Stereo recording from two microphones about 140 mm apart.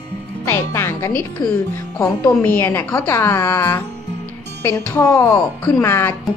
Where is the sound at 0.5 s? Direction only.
20° left (ahead or behind).